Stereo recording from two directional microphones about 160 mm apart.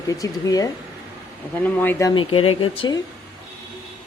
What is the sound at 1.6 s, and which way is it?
Speech, 10° left (ahead or behind).